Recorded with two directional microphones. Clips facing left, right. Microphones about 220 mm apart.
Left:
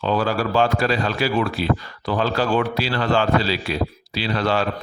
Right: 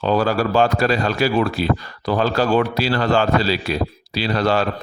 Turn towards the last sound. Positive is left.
turn(degrees=-40)  # may be behind; listen again after turning